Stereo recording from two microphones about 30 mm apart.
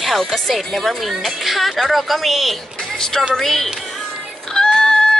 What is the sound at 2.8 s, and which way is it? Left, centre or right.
Speech, centre.